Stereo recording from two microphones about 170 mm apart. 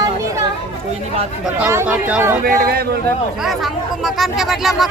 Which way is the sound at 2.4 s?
60° right (ahead or behind).